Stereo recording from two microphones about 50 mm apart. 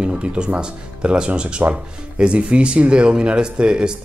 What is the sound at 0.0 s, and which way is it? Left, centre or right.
Speech, right.